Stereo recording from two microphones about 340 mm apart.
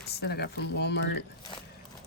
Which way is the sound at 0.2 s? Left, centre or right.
Left.